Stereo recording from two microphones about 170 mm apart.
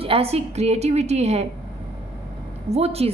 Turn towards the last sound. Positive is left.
turn(degrees=-35)  # may be behind; listen again after turning